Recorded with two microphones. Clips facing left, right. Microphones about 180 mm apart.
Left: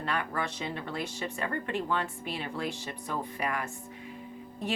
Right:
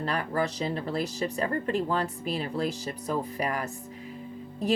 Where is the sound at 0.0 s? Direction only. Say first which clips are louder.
Right 4 dB; 35° right (ahead or behind).